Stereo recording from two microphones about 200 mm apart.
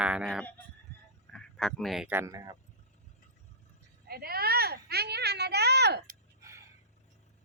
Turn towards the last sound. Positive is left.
turn(degrees=-55)  # may be behind; listen again after turning